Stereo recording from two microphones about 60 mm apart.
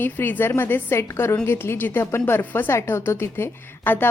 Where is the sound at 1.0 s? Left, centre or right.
Left.